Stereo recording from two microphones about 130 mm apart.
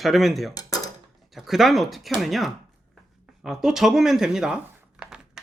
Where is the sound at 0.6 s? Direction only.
25° left (ahead or behind).